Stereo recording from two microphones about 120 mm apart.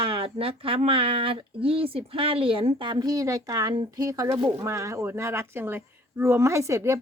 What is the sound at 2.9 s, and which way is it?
A woman's voice, 30° right (ahead or behind).